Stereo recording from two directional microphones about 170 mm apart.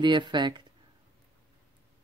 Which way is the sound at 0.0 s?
25° right (ahead or behind).